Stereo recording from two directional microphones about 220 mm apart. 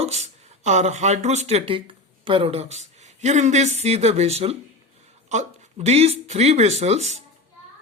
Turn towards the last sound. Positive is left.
turn(degrees=-30)  # may be behind; listen again after turning